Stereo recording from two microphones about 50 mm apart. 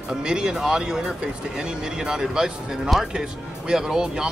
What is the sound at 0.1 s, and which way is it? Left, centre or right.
Speech, centre.